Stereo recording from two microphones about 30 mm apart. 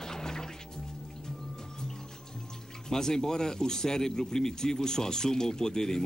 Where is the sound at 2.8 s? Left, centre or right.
Centre.